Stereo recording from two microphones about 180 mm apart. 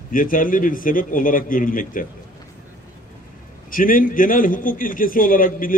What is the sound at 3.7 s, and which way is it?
A man's voice, 50° left (ahead or behind).